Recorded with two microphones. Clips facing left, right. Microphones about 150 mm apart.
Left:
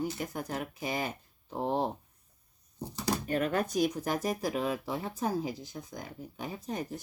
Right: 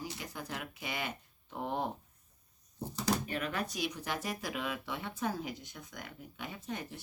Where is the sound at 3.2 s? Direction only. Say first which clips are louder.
Left 7 dB; 40° left (ahead or behind).